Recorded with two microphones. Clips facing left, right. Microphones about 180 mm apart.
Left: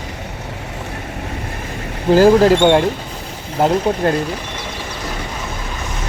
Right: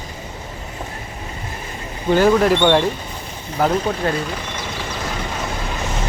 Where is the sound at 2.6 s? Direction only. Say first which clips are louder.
Left 3 dB; 20° left (ahead or behind).